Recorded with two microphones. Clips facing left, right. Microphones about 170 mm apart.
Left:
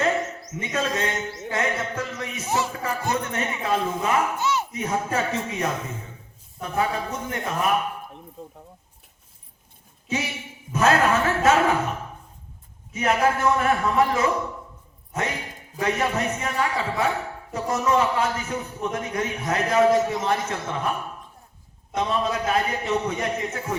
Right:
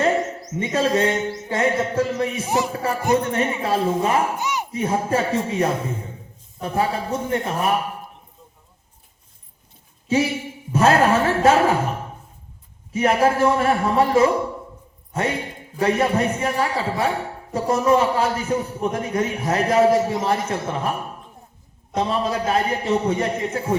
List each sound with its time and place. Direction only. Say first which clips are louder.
0.0 s a sound: right 4 dB; 30° right (ahead or behind)
2.6 s speech: right 6 dB; 30° right (ahead or behind)
4.4 s a sound: left 1 dB; 15° right (ahead or behind)
4.7 s speech: right 4 dB; 30° right (ahead or behind)
10.1 s speech: right 8 dB; 30° right (ahead or behind)
21.9 s speech: right 2 dB; 30° right (ahead or behind)